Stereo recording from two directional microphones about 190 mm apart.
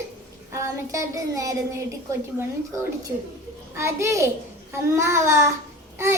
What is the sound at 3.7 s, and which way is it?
A woman's voice, 15° right (ahead or behind).